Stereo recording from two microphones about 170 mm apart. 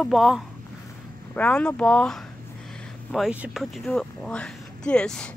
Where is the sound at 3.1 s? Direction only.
5° right (ahead or behind).